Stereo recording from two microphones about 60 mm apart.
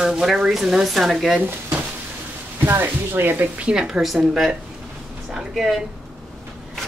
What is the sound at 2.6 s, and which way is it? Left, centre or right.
Speech, right.